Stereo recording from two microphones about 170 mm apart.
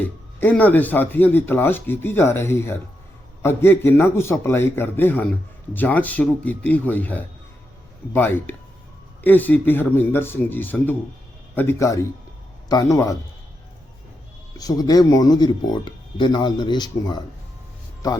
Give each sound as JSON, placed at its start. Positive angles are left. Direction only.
{"t": 0.0, "sound": "speech", "side_deg": 10}
{"t": 14.6, "sound": "speech", "side_deg": 20}